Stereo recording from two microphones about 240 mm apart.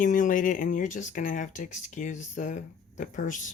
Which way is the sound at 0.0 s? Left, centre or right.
Left.